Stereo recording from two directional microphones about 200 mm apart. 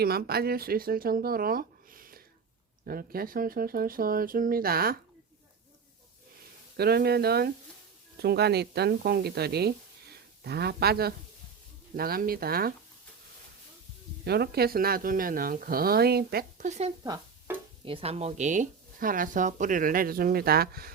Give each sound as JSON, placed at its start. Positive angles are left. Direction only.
{"t": 0.0, "sound": "speech", "side_deg": -50}
{"t": 6.7, "sound": "speech", "side_deg": -50}
{"t": 14.3, "sound": "speech", "side_deg": -50}
{"t": 17.0, "sound": "speech", "side_deg": -20}